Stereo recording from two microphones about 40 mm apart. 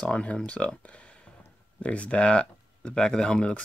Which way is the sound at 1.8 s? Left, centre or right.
Left.